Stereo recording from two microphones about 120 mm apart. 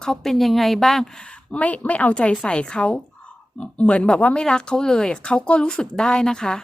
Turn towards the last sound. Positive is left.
turn(degrees=5)  # may be behind; listen again after turning